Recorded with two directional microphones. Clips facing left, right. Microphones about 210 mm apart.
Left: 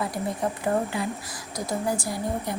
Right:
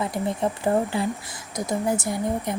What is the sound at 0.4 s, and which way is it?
Speech, 25° right (ahead or behind).